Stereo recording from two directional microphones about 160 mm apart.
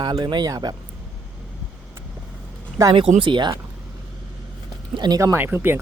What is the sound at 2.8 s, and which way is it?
Speech, 30° right (ahead or behind).